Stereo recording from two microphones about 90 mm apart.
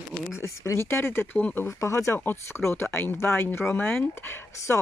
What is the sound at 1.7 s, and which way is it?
Speech, 35° left (ahead or behind).